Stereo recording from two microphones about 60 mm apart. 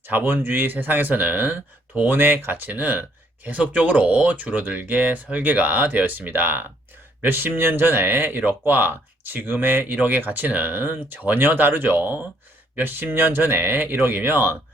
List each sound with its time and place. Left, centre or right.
0.1 s speech: right